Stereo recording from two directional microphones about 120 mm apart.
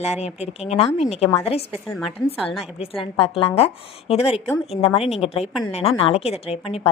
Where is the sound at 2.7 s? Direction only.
55° left (ahead or behind).